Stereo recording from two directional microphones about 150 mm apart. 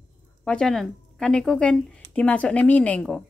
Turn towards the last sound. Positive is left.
turn(degrees=5)  # may be behind; listen again after turning